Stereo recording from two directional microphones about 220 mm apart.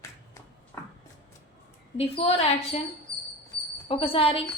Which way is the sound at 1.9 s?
25° left (ahead or behind).